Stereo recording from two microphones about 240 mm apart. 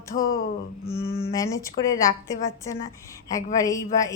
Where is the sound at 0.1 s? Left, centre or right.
Left.